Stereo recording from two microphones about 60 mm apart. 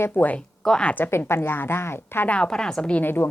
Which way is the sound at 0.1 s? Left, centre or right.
Left.